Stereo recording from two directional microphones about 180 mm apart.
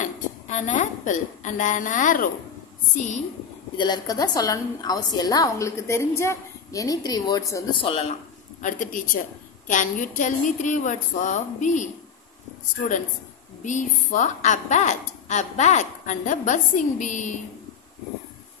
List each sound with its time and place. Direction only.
0.0 s a woman's voice: 40° left (ahead or behind)
3.7 s a woman's voice: 25° left (ahead or behind)
7.8 s speech: 30° left (ahead or behind)
8.6 s a woman's voice: 45° left (ahead or behind)
13.7 s a woman's voice: 45° left (ahead or behind)